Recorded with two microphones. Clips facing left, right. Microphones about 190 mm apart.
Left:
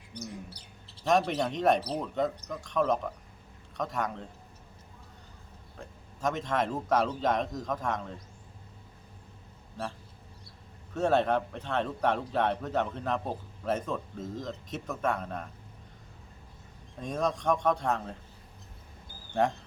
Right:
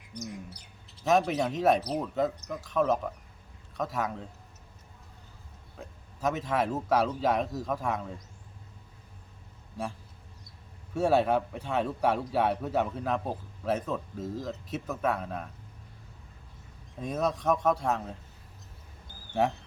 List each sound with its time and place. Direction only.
0.1 s bird: 30° left (ahead or behind)
1.0 s a man's voice: 5° right (ahead or behind)
5.7 s a man's voice: 5° right (ahead or behind)
10.9 s a man's voice: 10° right (ahead or behind)
17.0 s a man's voice: 5° right (ahead or behind)
19.3 s speech: 5° right (ahead or behind)